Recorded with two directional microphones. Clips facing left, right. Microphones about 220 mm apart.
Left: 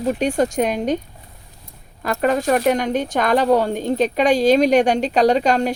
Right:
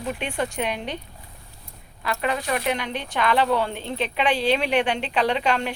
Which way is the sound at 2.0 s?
45° left (ahead or behind).